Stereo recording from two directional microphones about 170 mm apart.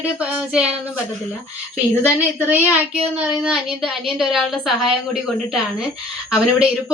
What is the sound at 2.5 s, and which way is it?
Speech, 5° right (ahead or behind).